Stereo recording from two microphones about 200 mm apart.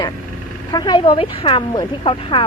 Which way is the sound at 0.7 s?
20° left (ahead or behind).